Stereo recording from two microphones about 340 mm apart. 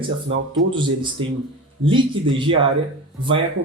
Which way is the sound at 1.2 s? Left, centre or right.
Centre.